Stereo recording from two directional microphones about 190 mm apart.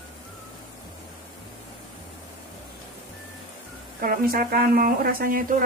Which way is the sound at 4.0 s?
50° right (ahead or behind).